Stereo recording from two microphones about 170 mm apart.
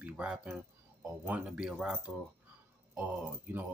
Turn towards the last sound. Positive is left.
turn(degrees=-10)  # may be behind; listen again after turning